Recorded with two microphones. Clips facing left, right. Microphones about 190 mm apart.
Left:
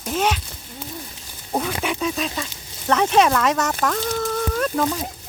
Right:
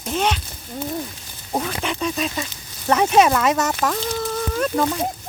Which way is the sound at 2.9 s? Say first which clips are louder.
Right 1 dB; 10° right (ahead or behind).